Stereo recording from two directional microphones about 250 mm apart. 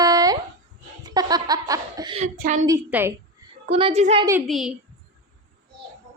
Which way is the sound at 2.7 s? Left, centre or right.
Centre.